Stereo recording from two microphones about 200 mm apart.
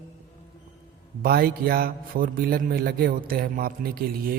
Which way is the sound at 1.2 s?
50° right (ahead or behind).